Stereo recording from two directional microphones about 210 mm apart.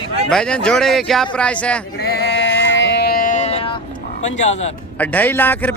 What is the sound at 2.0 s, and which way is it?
Sheep, 50° left (ahead or behind).